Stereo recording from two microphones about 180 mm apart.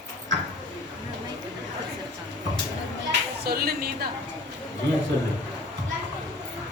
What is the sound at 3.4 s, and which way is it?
Speech, 60° right (ahead or behind).